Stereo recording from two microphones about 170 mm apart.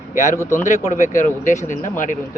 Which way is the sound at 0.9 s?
45° left (ahead or behind).